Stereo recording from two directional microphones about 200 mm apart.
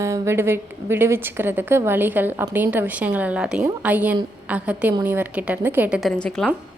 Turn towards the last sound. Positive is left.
turn(degrees=0)  # may be behind; listen again after turning